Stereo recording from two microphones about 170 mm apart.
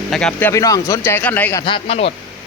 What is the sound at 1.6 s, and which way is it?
Speech, 30° left (ahead or behind).